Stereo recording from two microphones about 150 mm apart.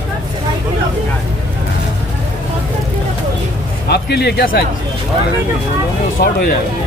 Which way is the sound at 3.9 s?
90° left.